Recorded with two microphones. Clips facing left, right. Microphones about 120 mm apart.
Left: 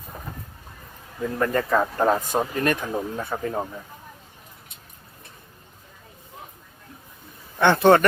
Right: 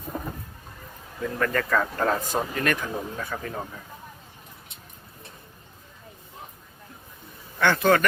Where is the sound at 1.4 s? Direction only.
25° left (ahead or behind).